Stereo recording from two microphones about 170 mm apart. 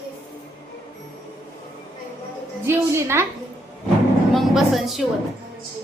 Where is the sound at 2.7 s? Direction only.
15° right (ahead or behind).